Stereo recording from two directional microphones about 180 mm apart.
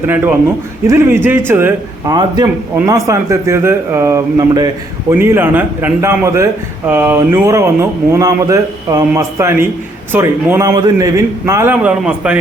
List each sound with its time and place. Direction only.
0.1 s a man's voice: 10° right (ahead or behind)
2.1 s a man's voice: 25° right (ahead or behind); by 12.4 s 5° right (ahead or behind)